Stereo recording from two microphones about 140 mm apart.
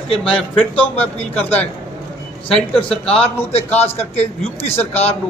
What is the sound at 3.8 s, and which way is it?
A man's voice, 50° left (ahead or behind).